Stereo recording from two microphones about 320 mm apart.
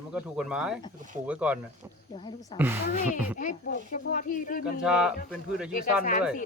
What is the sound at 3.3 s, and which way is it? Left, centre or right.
A woman's voice, left.